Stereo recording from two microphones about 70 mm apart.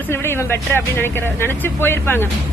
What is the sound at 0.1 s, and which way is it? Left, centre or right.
A man's voice, left.